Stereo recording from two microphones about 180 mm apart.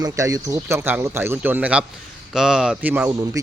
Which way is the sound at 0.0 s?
20° right (ahead or behind).